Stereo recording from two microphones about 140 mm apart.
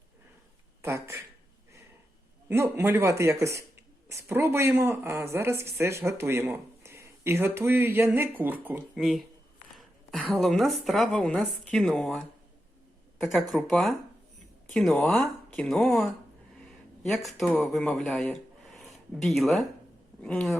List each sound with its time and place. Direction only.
0.8 s speech: 20° right (ahead or behind)
2.5 s speech: 20° right (ahead or behind)
9.0 s a woman's voice: centre (ahead or behind)
13.2 s a woman's voice: centre (ahead or behind)